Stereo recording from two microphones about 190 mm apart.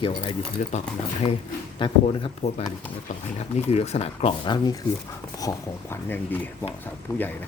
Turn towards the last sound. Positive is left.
turn(degrees=15)  # may be behind; listen again after turning